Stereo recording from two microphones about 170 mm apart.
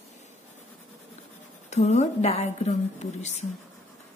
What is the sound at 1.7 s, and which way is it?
A woman's voice, 40° left (ahead or behind).